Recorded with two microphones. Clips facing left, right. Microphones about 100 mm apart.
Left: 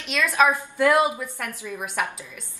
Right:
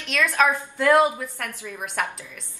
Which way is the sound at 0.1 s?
Centre (ahead or behind).